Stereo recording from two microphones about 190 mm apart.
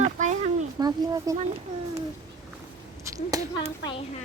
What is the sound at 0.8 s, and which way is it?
Speech, 20° right (ahead or behind).